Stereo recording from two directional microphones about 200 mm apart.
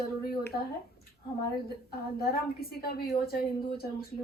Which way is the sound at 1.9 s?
50° left (ahead or behind).